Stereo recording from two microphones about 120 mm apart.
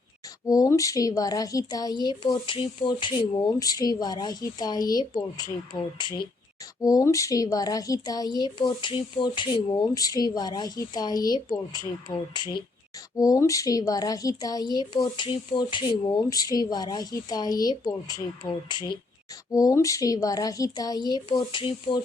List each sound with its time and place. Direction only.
0.4 s a woman's voice: 30° left (ahead or behind)